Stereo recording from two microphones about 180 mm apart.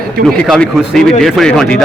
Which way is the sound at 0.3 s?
5° left (ahead or behind).